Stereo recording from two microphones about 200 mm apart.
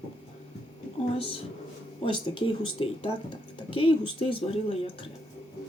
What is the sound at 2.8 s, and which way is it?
Speech, 30° left (ahead or behind).